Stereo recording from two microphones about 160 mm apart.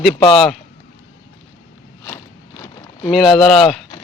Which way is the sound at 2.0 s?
15° left (ahead or behind).